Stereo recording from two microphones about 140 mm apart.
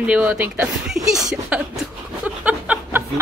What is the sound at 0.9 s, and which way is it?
Speech, centre (ahead or behind).